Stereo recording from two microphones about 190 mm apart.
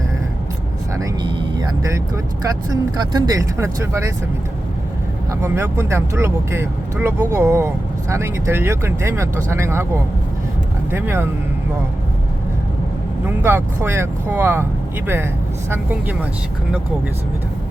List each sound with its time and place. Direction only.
0.9 s music: 20° right (ahead or behind)
3.0 s speech: 20° right (ahead or behind)
5.4 s speech: 15° right (ahead or behind)
10.9 s speech: 10° right (ahead or behind)
13.2 s speech: 10° right (ahead or behind)